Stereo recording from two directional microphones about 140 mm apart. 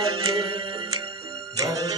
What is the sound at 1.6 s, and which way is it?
Music, 25° right (ahead or behind).